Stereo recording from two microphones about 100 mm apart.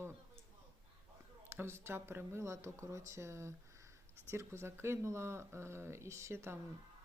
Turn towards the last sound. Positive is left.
turn(degrees=-25)  # may be behind; listen again after turning